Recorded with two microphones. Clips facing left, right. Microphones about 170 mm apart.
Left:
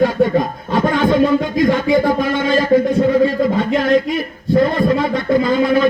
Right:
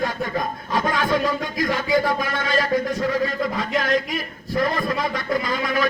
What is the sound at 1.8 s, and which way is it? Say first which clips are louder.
A man's voice: left 7 dB; 25° left (ahead or behind).